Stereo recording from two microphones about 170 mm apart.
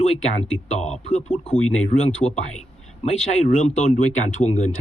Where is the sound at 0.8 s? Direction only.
40° left (ahead or behind).